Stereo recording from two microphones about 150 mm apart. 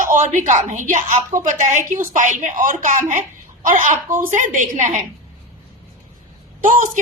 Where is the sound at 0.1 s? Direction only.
55° right (ahead or behind).